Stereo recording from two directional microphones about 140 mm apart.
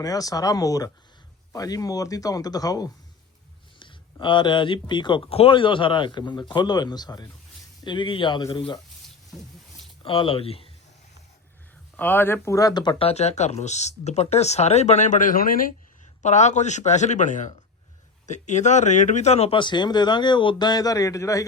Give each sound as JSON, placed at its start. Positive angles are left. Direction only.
{"t": 0.0, "sound": "speech", "side_deg": 25}
{"t": 9.3, "sound": "a sound", "side_deg": 0}
{"t": 10.0, "sound": "speech", "side_deg": 40}
{"t": 11.9, "sound": "speech", "side_deg": 15}
{"t": 13.1, "sound": "speech", "side_deg": 50}
{"t": 16.2, "sound": "speech", "side_deg": 55}